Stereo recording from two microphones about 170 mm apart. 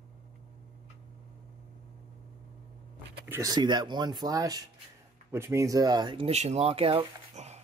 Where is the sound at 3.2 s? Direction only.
20° right (ahead or behind); by 7.6 s 40° right (ahead or behind).